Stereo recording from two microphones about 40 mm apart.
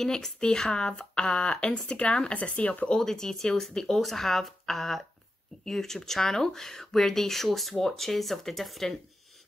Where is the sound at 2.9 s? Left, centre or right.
Centre.